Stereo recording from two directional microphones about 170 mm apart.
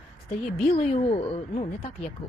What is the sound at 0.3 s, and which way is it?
A woman's voice, 35° left (ahead or behind).